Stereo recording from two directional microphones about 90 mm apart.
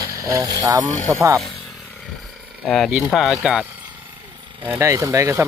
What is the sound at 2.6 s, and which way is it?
Speech, centre (ahead or behind).